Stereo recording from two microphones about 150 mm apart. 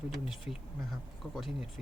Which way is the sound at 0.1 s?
Centre (ahead or behind).